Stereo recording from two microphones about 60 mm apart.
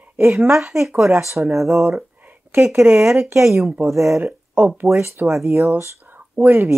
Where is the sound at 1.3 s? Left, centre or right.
Right.